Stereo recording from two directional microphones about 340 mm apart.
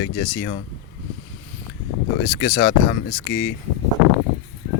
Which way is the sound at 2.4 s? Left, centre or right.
Left.